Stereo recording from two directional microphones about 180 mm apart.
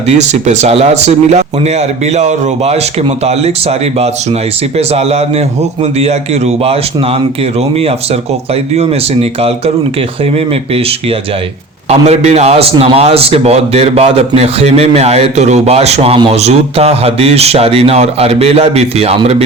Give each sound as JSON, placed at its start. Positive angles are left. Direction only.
{"t": 0.2, "sound": "a man's voice", "side_deg": -40}
{"t": 8.7, "sound": "a man's voice", "side_deg": -35}
{"t": 11.9, "sound": "a man's voice", "side_deg": -35}